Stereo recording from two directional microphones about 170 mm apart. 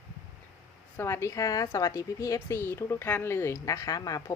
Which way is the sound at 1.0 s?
15° left (ahead or behind).